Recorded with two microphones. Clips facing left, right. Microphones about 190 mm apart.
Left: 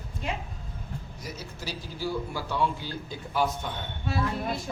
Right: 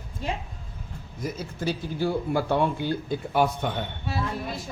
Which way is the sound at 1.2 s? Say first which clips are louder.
Right 11 dB; 55° right (ahead or behind).